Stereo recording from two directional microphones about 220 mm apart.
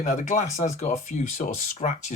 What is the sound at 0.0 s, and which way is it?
Speech, 35° left (ahead or behind).